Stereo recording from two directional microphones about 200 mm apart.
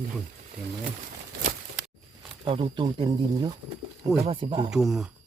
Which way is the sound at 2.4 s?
25° right (ahead or behind).